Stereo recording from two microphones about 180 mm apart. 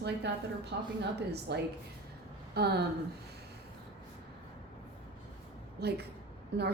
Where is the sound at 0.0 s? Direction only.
70° right (ahead or behind).